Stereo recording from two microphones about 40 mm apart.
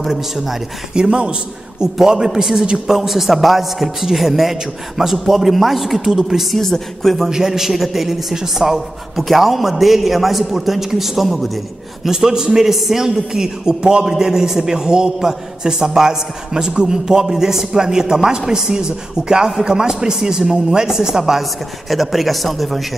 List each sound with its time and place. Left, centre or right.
0.1 s a man's voice: centre
0.9 s a man's voice: right
2.0 s a man's voice: centre
6.5 s speech: centre
7.2 s a man's voice: centre
12.1 s a man's voice: centre